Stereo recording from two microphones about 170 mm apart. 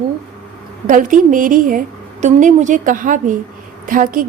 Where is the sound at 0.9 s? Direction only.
50° right (ahead or behind).